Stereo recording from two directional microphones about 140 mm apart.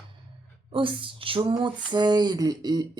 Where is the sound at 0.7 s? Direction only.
40° right (ahead or behind).